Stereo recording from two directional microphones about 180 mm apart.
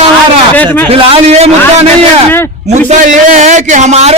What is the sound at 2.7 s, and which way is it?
A man's voice, 40° right (ahead or behind).